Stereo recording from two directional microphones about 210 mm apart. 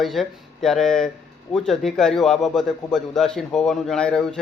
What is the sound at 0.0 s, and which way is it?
A man's voice, centre (ahead or behind).